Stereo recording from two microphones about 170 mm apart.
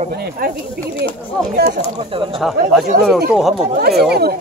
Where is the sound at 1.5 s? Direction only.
80° right.